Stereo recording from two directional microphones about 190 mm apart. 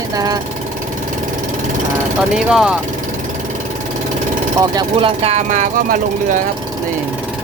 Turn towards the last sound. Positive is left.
turn(degrees=-45)  # may be behind; listen again after turning